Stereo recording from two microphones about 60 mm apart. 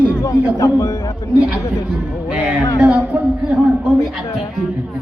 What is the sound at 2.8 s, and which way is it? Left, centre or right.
Speech, right.